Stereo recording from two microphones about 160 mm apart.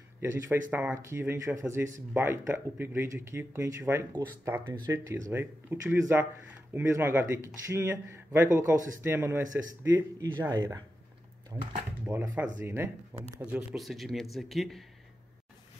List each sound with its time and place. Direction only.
0.2 s speech: 15° right (ahead or behind)
12.1 s a man's voice: 10° right (ahead or behind)